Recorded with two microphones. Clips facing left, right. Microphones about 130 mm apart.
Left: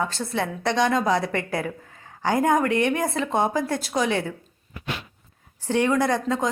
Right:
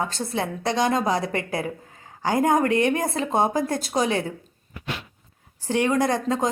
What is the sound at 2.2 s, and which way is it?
A woman's voice, 35° right (ahead or behind).